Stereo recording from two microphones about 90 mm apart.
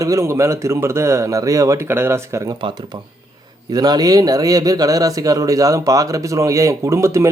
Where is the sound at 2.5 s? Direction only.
60° right (ahead or behind).